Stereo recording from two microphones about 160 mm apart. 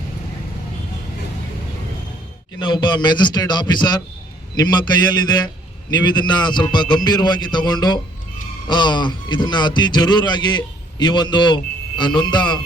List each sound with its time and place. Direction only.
2.6 s a man's voice: 30° left (ahead or behind)
5.9 s a man's voice: 25° left (ahead or behind)